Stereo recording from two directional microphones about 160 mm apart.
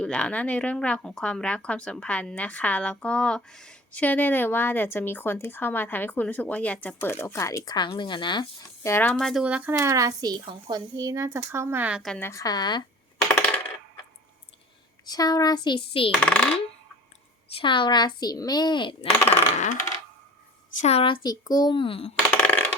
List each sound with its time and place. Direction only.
0.0 s a woman's voice: 5° left (ahead or behind); by 8.4 s 30° left (ahead or behind)
8.8 s speech: 15° left (ahead or behind); by 9.7 s 10° right (ahead or behind)
9.7 s speech: 20° right (ahead or behind)
12.1 s speech: 15° left (ahead or behind)
15.0 s speech: 25° left (ahead or behind)
16.2 s speech: 5° left (ahead or behind)
17.5 s speech: 30° left (ahead or behind)
19.5 s coin: 50° left (ahead or behind)
20.7 s speech: 40° left (ahead or behind)
22.1 s coin: 10° left (ahead or behind)